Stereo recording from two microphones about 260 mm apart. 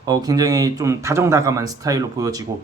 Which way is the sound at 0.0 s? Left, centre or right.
Centre.